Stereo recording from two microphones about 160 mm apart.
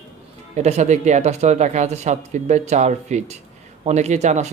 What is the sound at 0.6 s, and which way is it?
Speech, 40° right (ahead or behind).